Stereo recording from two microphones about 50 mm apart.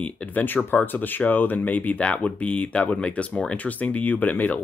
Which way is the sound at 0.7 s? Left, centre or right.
Left.